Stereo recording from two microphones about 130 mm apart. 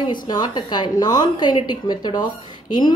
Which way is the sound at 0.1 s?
35° left (ahead or behind).